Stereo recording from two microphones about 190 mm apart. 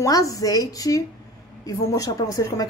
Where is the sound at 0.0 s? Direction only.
15° left (ahead or behind).